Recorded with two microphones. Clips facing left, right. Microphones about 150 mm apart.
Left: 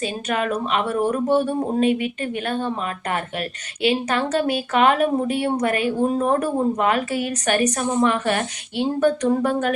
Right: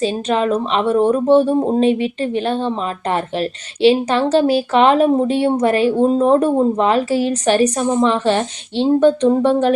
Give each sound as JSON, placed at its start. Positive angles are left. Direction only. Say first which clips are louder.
{"t": 0.0, "sound": "speech", "louder": "right 7 dB", "side_deg": -30}